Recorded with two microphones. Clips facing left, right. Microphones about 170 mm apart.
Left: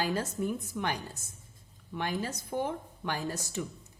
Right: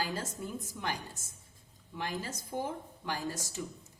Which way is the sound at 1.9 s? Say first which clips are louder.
Left 4 dB; 65° left (ahead or behind).